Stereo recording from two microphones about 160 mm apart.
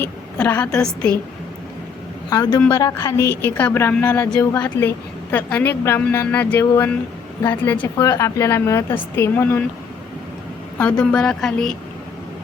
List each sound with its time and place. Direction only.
0.0 s a woman's voice: 10° left (ahead or behind)
2.3 s a woman's voice: 25° left (ahead or behind)
4.3 s a woman's voice: 20° left (ahead or behind)
10.8 s speech: 10° left (ahead or behind)